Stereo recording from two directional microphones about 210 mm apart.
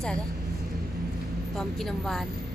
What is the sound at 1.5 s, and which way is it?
Speech, centre (ahead or behind).